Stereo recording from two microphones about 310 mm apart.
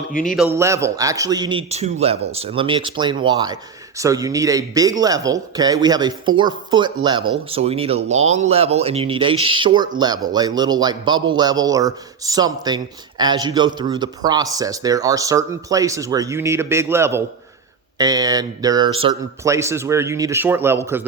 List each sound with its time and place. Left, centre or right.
0.1 s a man's voice: left
0.3 s speech: centre